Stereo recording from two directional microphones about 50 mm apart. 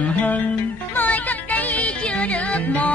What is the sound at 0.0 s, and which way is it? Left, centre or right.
Music, left.